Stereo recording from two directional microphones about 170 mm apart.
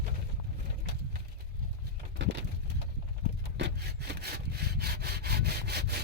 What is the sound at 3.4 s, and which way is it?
Sawing, 85° right.